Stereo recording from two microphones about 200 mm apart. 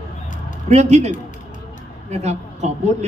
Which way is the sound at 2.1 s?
35° right (ahead or behind).